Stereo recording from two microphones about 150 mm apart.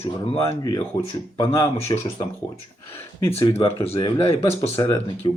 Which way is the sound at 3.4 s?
40° left (ahead or behind).